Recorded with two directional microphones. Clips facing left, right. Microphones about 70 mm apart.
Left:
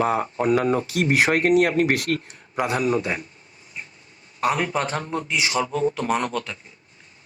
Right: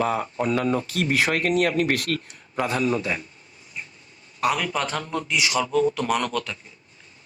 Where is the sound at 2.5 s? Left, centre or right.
Centre.